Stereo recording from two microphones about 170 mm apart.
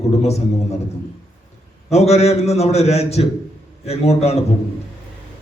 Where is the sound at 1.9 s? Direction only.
40° left (ahead or behind).